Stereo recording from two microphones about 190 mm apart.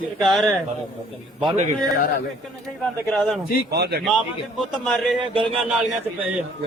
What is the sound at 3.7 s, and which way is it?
Speech, 60° right (ahead or behind).